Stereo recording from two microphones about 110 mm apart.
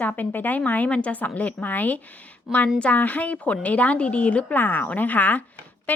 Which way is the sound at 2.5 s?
Centre (ahead or behind).